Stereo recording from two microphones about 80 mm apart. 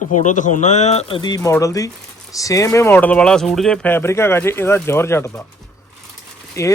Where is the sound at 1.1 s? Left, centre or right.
Left.